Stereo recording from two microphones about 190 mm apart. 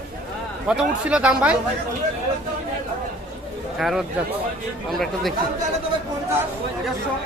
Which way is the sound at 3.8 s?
Centre (ahead or behind).